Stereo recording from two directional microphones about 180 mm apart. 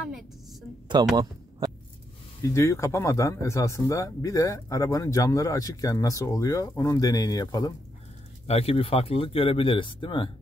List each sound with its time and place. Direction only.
1.0 s speech: 25° right (ahead or behind)
2.4 s speech: 15° left (ahead or behind)
8.5 s speech: 35° left (ahead or behind)